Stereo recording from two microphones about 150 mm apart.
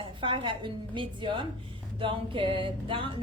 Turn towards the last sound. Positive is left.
turn(degrees=-35)  # may be behind; listen again after turning